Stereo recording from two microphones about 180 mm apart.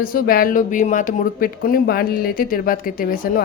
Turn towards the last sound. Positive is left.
turn(degrees=50)  # may be behind; listen again after turning